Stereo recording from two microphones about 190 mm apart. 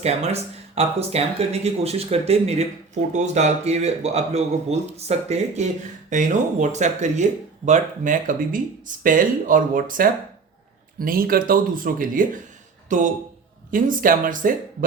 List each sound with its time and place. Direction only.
0.0 s speech: 35° right (ahead or behind)